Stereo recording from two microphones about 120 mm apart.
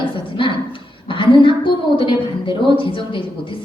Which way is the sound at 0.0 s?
45° left (ahead or behind).